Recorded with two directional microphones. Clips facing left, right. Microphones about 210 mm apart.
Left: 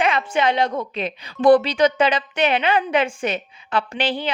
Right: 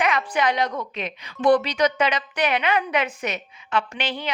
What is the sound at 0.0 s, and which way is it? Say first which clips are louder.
A woman's voice: left 3 dB; 25° left (ahead or behind).